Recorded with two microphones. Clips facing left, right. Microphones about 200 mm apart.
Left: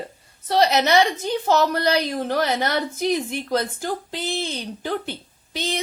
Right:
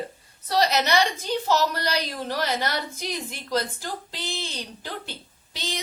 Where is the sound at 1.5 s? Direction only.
55° left (ahead or behind).